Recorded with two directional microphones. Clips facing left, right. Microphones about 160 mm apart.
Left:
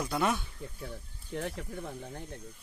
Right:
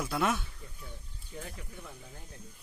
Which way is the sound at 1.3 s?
80° left.